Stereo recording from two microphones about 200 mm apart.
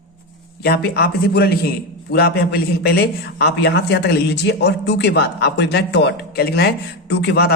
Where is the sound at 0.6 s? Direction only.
50° left (ahead or behind).